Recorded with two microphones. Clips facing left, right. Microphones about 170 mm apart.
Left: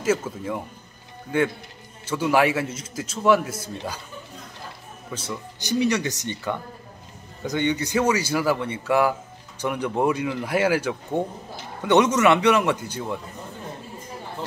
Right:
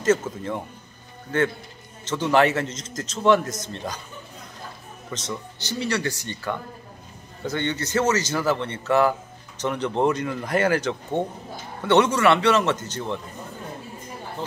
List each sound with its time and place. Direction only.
0.0 s a man's voice: 10° left (ahead or behind)
5.1 s a man's voice: 10° left (ahead or behind)